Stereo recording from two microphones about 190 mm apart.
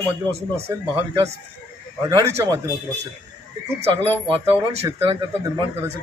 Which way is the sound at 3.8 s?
30° right (ahead or behind).